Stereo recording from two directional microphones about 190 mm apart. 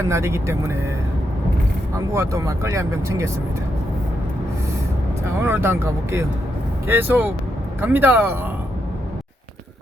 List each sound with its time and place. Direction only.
0.0 s speech: 15° right (ahead or behind)
2.0 s speech: 15° right (ahead or behind)
5.2 s speech: 10° right (ahead or behind)